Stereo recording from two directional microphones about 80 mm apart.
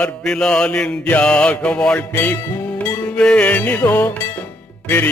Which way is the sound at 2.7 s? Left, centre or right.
Centre.